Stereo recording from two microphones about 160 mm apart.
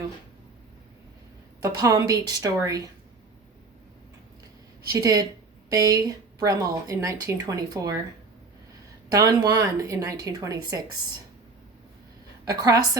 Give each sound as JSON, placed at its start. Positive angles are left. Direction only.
{"t": 1.6, "sound": "speech", "side_deg": -20}
{"t": 4.9, "sound": "speech", "side_deg": -20}
{"t": 9.0, "sound": "speech", "side_deg": -20}
{"t": 12.5, "sound": "speech", "side_deg": -20}